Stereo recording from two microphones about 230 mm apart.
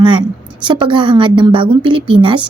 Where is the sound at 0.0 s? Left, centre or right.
Centre.